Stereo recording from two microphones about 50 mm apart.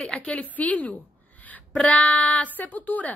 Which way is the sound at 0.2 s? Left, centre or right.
Left.